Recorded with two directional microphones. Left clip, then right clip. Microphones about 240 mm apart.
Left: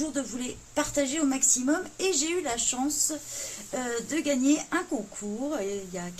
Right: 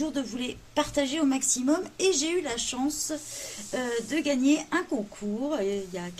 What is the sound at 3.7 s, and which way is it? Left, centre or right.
A woman's voice, centre.